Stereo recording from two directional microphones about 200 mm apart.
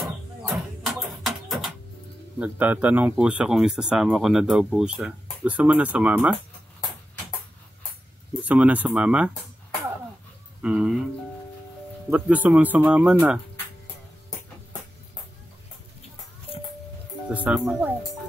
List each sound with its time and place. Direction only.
0.8 s a sound: centre (ahead or behind)
2.3 s speech: 5° right (ahead or behind)
8.3 s speech: 5° right (ahead or behind)
10.6 s speech: 5° right (ahead or behind)
12.1 s speech: 5° right (ahead or behind)
17.3 s speech: 5° right (ahead or behind)